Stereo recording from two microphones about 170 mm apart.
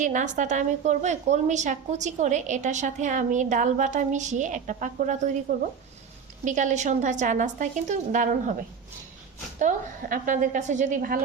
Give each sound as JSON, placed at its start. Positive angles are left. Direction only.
{"t": 0.0, "sound": "a woman's voice", "side_deg": -50}